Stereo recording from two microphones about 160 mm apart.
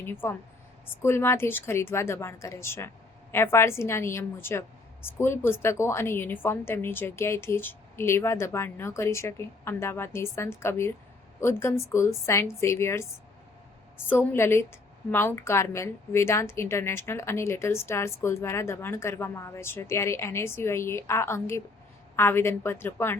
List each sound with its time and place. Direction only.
0.0 s a woman's voice: 15° left (ahead or behind)
14.1 s a woman's voice: 15° left (ahead or behind)